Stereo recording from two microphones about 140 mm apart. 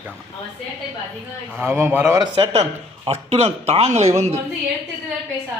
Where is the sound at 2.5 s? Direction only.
50° right (ahead or behind).